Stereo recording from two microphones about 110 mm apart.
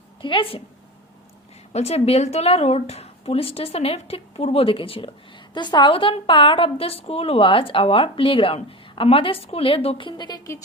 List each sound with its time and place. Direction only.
0.2 s a woman's voice: 50° left (ahead or behind)
1.7 s a woman's voice: 70° left (ahead or behind)
5.5 s a woman's voice: 45° left (ahead or behind); by 10.1 s 60° left (ahead or behind)
10.1 s a woman's voice: 40° left (ahead or behind)